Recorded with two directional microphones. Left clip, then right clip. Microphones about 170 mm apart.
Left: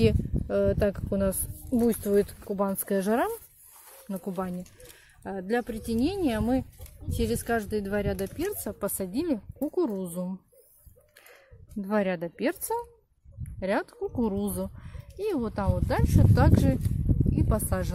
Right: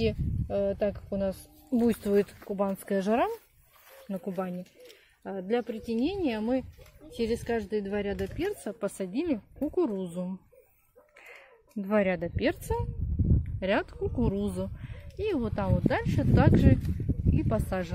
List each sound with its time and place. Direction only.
0.0 s speech: 35° left (ahead or behind)
1.8 s speech: 5° left (ahead or behind)
11.8 s speech: 10° left (ahead or behind)